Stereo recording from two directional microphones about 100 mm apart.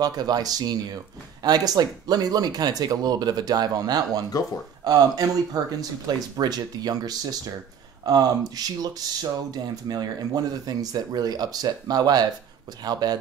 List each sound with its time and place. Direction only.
0.0 s speech: 40° right (ahead or behind)